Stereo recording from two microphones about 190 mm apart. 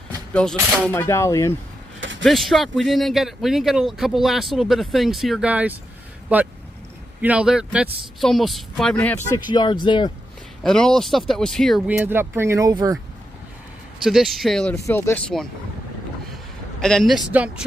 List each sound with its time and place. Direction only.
0.3 s speech: 5° left (ahead or behind)
2.0 s a sound: 75° right (ahead or behind)
2.2 s speech: centre (ahead or behind)
9.5 s speech: 25° left (ahead or behind)
10.6 s speech: 5° left (ahead or behind); by 12.9 s 20° right (ahead or behind)
14.0 s speech: centre (ahead or behind)
16.8 s speech: centre (ahead or behind)